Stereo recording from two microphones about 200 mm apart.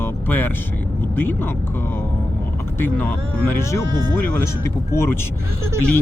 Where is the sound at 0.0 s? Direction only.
10° left (ahead or behind).